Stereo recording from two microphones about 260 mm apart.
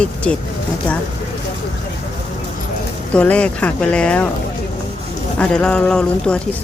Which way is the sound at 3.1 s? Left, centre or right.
Centre.